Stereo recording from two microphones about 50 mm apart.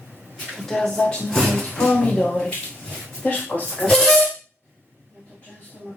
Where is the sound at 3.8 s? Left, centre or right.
Centre.